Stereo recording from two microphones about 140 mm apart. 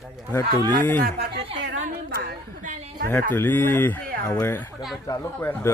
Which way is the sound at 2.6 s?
65° right (ahead or behind).